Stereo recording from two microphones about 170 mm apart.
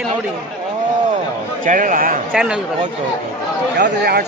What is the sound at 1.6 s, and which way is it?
Speech, 50° right (ahead or behind).